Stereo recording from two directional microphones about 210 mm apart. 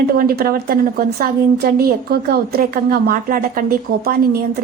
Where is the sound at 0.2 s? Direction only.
45° right (ahead or behind).